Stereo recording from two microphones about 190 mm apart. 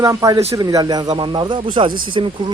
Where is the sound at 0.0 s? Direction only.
15° right (ahead or behind).